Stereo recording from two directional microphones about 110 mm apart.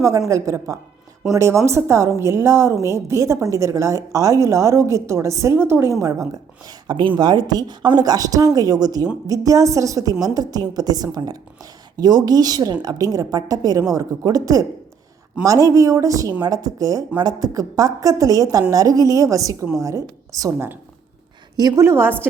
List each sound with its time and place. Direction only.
0.3 s a woman's voice: 30° right (ahead or behind)
6.7 s a woman's voice: 45° right (ahead or behind); by 22.3 s 20° right (ahead or behind)